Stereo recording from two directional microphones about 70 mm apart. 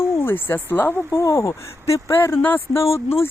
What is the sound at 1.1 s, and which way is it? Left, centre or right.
Speech, left.